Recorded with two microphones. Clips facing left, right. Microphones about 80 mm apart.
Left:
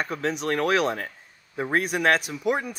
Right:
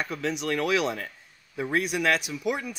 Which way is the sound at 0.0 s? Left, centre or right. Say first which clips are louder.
Left 2 dB; left.